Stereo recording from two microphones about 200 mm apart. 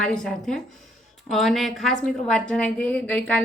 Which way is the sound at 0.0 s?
5° left (ahead or behind).